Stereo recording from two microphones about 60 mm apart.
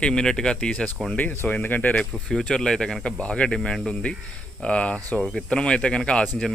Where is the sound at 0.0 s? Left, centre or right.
Centre.